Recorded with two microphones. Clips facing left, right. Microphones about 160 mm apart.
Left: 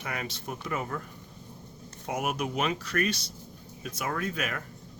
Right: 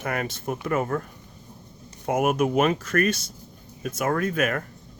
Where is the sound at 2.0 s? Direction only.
50° right (ahead or behind).